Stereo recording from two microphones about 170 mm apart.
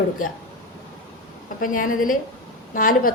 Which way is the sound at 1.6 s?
55° left (ahead or behind).